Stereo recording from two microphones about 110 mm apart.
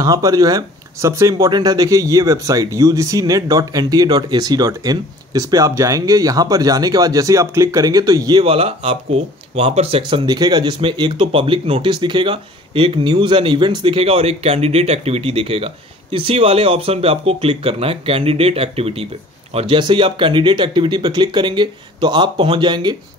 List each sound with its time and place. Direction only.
0.0 s speech: 35° right (ahead or behind)
8.4 s speech: 60° right (ahead or behind)
11.9 s speech: 45° right (ahead or behind); by 19.0 s 65° right (ahead or behind)
19.5 s speech: 50° right (ahead or behind)